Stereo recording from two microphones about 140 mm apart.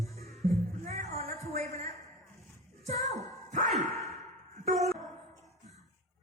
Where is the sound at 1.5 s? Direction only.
55° right (ahead or behind).